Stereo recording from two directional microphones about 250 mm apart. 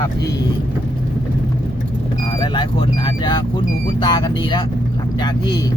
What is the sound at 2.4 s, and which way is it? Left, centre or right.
Vehicle, centre.